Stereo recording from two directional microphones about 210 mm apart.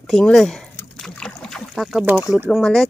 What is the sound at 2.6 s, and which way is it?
Speech, centre (ahead or behind).